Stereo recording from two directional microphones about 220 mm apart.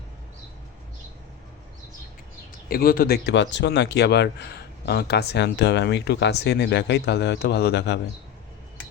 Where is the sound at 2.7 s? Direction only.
45° left (ahead or behind).